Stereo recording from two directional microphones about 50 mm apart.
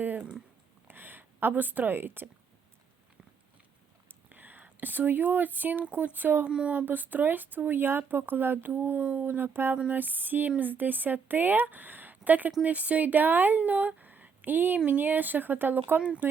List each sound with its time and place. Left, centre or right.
0.9 s a sound: right
4.3 s a woman's voice: right
6.5 s speech: right
6.8 s speech: right
9.0 s a woman's voice: right
9.7 s a woman's voice: right
16.0 s speech: right